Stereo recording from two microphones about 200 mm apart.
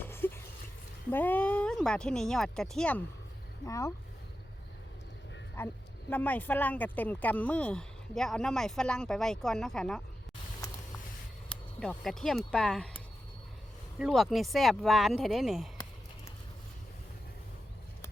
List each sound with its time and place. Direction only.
0.0 s a sound: 10° left (ahead or behind)
1.1 s speech: 10° left (ahead or behind)
3.7 s speech: 15° left (ahead or behind)
5.5 s speech: 10° left (ahead or behind)
11.4 s a sound: 5° left (ahead or behind)
12.4 s speech: 5° left (ahead or behind)
14.0 s speech: centre (ahead or behind)